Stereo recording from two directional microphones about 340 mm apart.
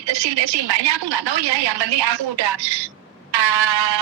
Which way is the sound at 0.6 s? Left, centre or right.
Right.